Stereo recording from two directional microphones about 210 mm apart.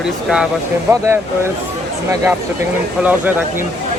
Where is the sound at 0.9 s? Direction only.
15° right (ahead or behind).